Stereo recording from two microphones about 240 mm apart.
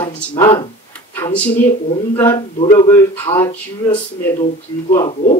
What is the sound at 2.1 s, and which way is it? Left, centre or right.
Speech, centre.